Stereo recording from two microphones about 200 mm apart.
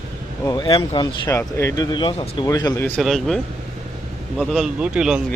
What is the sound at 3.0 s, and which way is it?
Speech, centre (ahead or behind).